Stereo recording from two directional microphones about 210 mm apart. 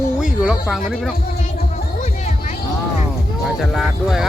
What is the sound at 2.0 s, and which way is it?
Music, 35° left (ahead or behind).